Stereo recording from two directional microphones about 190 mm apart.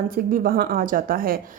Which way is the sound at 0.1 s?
50° right (ahead or behind).